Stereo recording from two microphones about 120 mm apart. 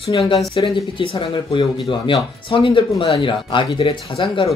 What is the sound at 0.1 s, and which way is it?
Speech, 40° left (ahead or behind).